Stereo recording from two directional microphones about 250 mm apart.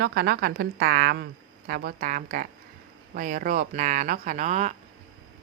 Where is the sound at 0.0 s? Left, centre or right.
Right.